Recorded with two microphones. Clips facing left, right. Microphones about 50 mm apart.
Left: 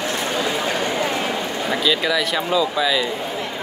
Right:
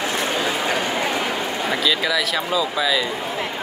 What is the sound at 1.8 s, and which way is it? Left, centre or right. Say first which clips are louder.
Speech: left 2 dB; centre.